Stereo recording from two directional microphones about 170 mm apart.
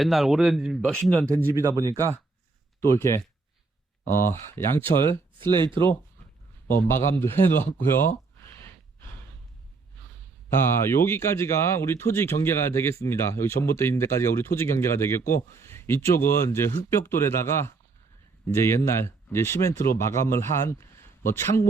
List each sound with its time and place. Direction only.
0.0 s speech: centre (ahead or behind)
1.5 s speech: 15° right (ahead or behind)
2.8 s speech: 15° left (ahead or behind)
5.5 s speech: 25° right (ahead or behind)
6.8 s speech: 15° left (ahead or behind)
8.5 s gasp: 15° left (ahead or behind)
10.8 s a man's voice: 15° left (ahead or behind)